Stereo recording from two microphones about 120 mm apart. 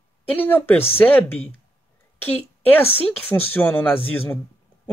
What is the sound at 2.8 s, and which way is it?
Speech, 55° left (ahead or behind).